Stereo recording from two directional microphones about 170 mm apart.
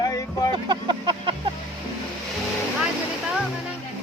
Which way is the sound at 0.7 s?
25° right (ahead or behind).